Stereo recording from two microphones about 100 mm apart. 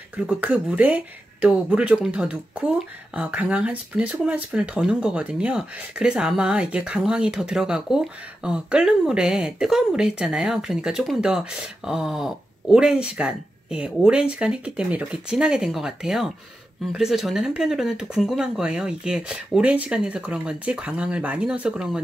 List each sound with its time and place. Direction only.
0.3 s speech: 15° right (ahead or behind)